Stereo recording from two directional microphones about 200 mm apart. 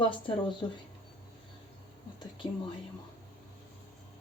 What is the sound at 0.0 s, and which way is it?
Speech, 25° left (ahead or behind).